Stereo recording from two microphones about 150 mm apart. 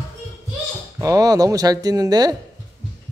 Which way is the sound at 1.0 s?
20° right (ahead or behind).